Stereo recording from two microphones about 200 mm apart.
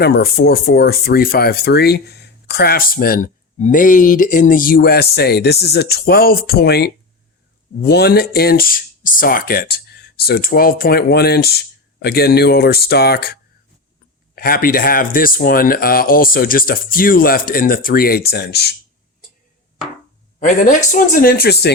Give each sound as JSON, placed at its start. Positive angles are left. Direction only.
{"t": 0.0, "sound": "speech", "side_deg": 50}
{"t": 20.4, "sound": "speech", "side_deg": 40}